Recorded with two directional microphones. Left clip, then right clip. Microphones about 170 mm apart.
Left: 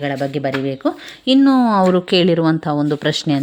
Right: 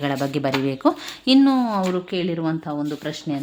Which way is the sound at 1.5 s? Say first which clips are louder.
Left 7 dB; 35° left (ahead or behind).